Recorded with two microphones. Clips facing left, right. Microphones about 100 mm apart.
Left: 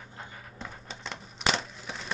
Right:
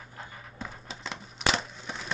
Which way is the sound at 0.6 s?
Centre (ahead or behind).